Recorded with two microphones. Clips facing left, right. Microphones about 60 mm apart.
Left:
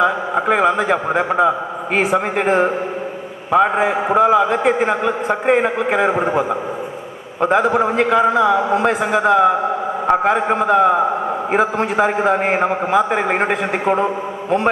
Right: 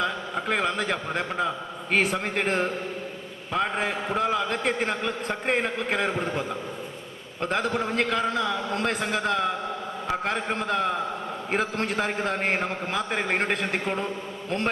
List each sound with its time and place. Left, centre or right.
0.0 s a man's voice: centre